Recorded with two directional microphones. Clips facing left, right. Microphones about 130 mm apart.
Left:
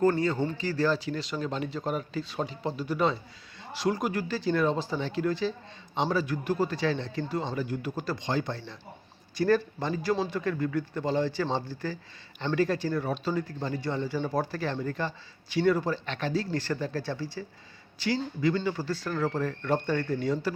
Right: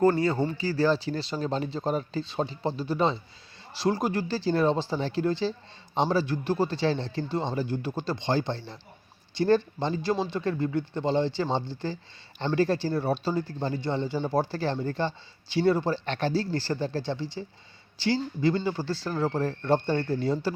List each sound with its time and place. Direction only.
0.0 s speech: 35° right (ahead or behind)
0.3 s speech: 10° right (ahead or behind)
0.7 s speech: 30° right (ahead or behind)